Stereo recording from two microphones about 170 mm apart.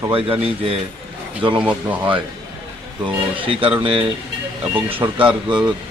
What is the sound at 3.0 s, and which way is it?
Speech, 30° right (ahead or behind).